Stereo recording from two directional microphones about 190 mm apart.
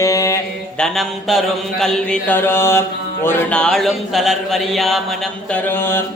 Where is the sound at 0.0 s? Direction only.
15° left (ahead or behind).